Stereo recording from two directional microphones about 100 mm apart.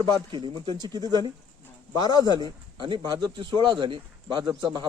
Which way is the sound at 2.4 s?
50° right (ahead or behind).